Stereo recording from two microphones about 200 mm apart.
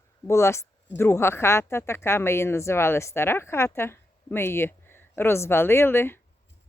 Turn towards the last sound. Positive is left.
turn(degrees=10)  # may be behind; listen again after turning